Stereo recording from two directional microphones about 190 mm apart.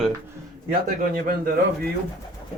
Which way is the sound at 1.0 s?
50° right (ahead or behind).